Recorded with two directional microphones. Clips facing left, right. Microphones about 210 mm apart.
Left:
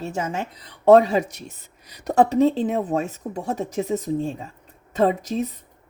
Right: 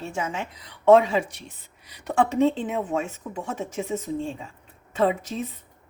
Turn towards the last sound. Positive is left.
turn(degrees=40)  # may be behind; listen again after turning